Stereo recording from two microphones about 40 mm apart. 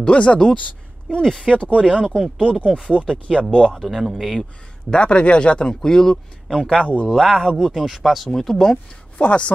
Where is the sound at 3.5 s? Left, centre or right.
Left.